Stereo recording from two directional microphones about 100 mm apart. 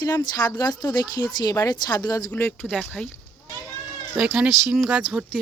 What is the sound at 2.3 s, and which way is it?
Speech, 15° left (ahead or behind).